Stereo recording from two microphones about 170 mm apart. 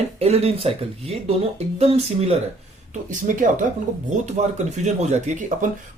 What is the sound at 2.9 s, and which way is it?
Speech, 50° right (ahead or behind).